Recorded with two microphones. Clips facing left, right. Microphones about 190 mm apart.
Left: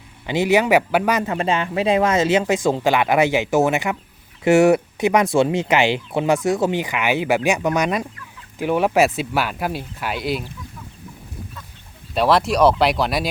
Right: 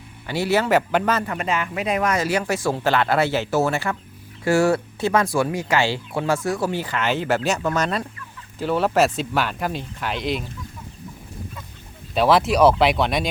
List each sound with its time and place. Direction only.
0.3 s speech: 15° left (ahead or behind)
1.2 s speech: 25° left (ahead or behind); by 10.4 s 5° left (ahead or behind)
12.1 s speech: centre (ahead or behind)